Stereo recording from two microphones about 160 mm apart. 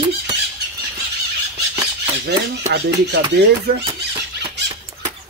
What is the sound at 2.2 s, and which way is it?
Speech, 90° right.